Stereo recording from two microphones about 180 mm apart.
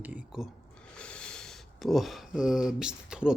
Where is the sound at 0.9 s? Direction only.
5° left (ahead or behind).